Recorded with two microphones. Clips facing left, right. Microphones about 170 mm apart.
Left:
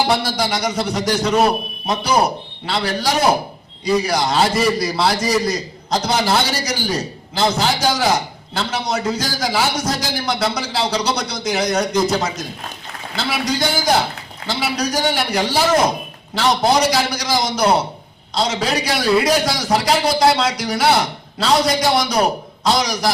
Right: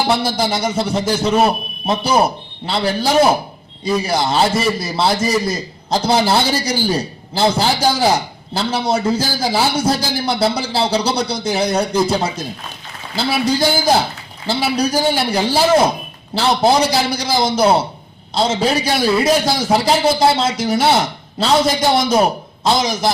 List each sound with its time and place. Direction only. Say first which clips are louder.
0.2 s a man's voice: right 2 dB; 25° right (ahead or behind)
2.6 s a man's voice: right 3 dB; 25° right (ahead or behind)